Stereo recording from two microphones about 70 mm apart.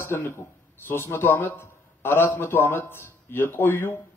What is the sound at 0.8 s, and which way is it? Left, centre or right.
A man's voice, left.